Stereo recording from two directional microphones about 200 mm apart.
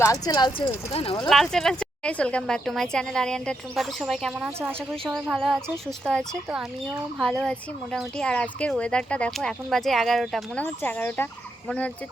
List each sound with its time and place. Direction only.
0.0 s speech: 15° left (ahead or behind)
1.3 s a woman's voice: centre (ahead or behind)